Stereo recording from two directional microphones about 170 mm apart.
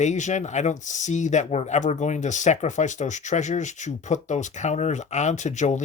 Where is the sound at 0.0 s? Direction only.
45° left (ahead or behind).